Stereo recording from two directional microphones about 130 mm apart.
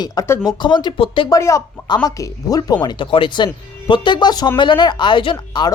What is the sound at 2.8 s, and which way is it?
Speech, 40° left (ahead or behind).